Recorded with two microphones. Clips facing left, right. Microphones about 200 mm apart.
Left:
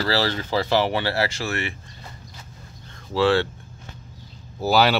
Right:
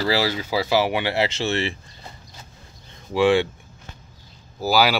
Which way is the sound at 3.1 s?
15° right (ahead or behind).